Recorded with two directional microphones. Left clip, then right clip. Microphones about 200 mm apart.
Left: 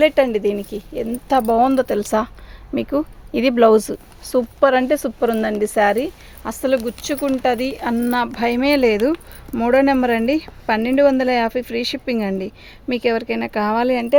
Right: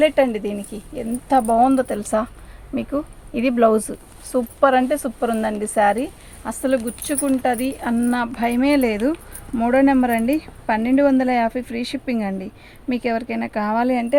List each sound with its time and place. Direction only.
0.0 s speech: 55° left (ahead or behind)